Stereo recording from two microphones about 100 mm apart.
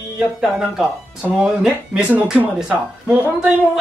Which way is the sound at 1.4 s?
5° right (ahead or behind).